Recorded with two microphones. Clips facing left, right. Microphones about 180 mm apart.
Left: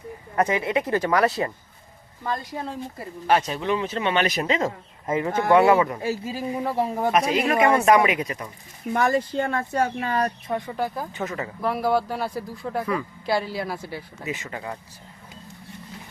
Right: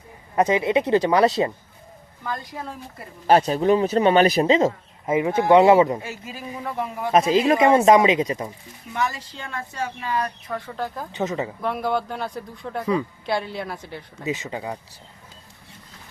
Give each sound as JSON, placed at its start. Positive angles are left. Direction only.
{"t": 0.3, "sound": "speech", "side_deg": -20}
{"t": 3.2, "sound": "speech", "side_deg": -35}
{"t": 5.0, "sound": "speech", "side_deg": -10}
{"t": 6.0, "sound": "speech", "side_deg": 35}
{"t": 7.1, "sound": "speech", "side_deg": -30}
{"t": 8.9, "sound": "speech", "side_deg": 50}
{"t": 10.7, "sound": "speech", "side_deg": 10}
{"t": 11.2, "sound": "speech", "side_deg": -20}
{"t": 11.6, "sound": "speech", "side_deg": 5}
{"t": 14.3, "sound": "speech", "side_deg": -20}